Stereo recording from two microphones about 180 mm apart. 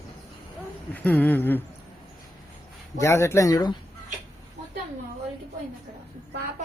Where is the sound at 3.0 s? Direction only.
15° left (ahead or behind).